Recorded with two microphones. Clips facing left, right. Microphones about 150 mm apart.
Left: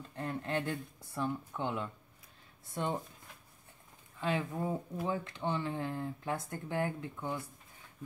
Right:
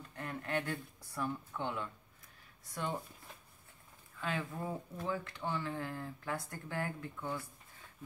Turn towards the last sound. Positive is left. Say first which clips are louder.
# left 2 dB
turn(degrees=20)  # may be behind; listen again after turning